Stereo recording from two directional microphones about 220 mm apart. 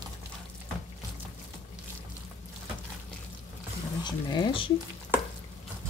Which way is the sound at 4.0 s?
20° left (ahead or behind).